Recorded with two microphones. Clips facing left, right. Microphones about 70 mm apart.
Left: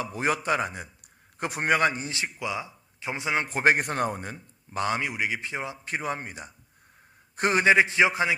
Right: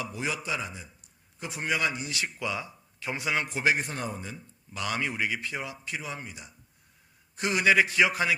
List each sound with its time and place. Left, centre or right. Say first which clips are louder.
0.0 s a man's voice: left 6 dB; left
2.2 s speech: left 1 dB; centre
3.4 s a man's voice: left 8 dB; left
4.8 s a man's voice: left 4 dB; left
5.0 s a man's voice: left 1 dB; centre
5.8 s a man's voice: left 6 dB; left
7.6 s a man's voice: left 2 dB; left